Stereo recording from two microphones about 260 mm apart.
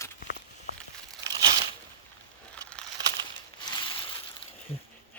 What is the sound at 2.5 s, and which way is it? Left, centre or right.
Crumpling, centre.